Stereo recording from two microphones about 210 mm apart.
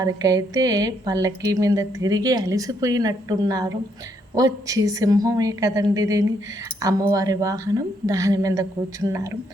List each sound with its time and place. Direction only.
0.0 s speech: 15° right (ahead or behind)